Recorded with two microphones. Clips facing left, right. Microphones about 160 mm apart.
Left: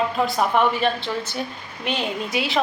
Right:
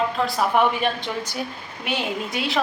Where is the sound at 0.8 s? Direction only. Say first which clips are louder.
Left 2 dB; 15° right (ahead or behind).